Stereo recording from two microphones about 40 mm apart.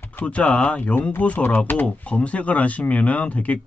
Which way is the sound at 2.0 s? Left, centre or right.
Left.